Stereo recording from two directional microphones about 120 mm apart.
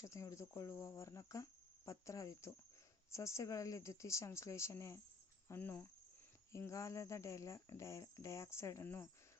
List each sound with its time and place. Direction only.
0.0 s speech: 25° left (ahead or behind)